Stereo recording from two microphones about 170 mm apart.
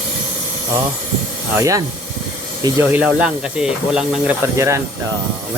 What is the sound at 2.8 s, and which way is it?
Speech, 10° right (ahead or behind).